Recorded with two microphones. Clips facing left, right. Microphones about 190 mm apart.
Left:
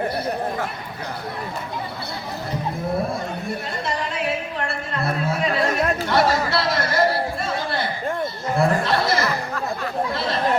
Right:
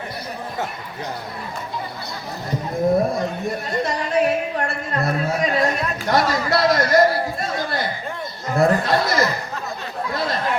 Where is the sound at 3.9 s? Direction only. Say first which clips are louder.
Right 6 dB; 45° right (ahead or behind).